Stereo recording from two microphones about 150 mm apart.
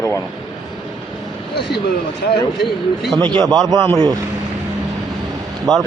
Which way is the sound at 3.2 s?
30° right (ahead or behind).